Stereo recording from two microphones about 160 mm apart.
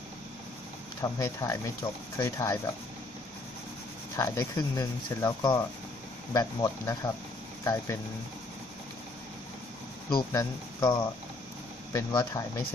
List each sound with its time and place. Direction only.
1.0 s speech: 20° left (ahead or behind)
4.2 s speech: 20° left (ahead or behind)
10.1 s speech: 30° left (ahead or behind)